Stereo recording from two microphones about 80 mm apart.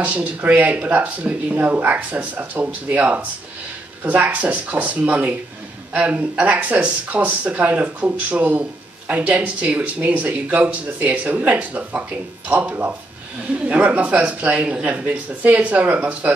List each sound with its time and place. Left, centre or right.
0.0 s speech: centre